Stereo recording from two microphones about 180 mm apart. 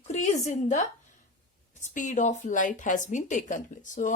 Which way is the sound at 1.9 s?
45° left (ahead or behind).